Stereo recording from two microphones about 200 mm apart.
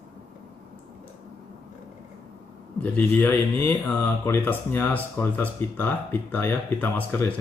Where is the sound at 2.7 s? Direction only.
10° left (ahead or behind).